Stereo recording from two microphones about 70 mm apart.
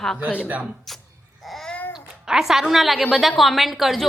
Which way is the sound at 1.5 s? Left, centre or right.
Centre.